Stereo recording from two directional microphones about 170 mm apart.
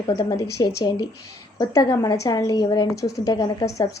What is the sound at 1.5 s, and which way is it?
A woman's voice, 25° left (ahead or behind).